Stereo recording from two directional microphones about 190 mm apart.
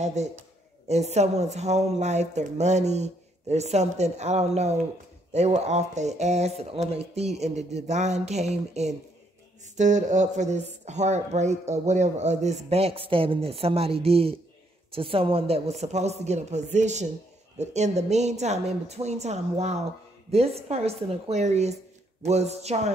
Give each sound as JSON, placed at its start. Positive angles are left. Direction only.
{"t": 0.0, "sound": "speech", "side_deg": -35}